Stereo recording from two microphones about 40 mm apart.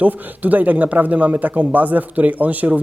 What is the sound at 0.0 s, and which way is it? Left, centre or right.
Speech, right.